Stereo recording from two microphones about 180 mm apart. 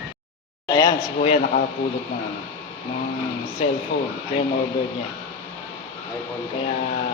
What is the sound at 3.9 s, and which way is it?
Speech, 70° left (ahead or behind).